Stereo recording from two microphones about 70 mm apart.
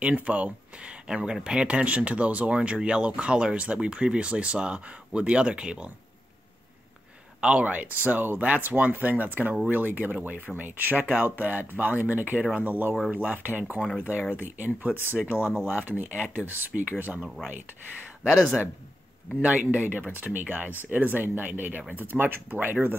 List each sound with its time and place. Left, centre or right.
0.0 s speech: centre
7.3 s speech: centre
18.3 s speech: centre
19.4 s speech: right